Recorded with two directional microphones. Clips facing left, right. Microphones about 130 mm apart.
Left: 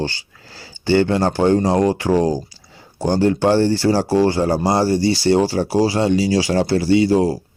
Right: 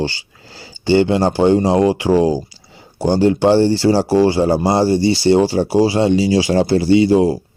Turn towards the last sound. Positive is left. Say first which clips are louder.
# right 3 dB
turn(degrees=-20)  # may be behind; listen again after turning